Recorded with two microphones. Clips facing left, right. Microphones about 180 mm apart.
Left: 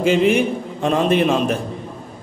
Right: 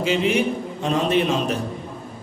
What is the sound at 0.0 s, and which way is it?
A man's voice, 50° left (ahead or behind).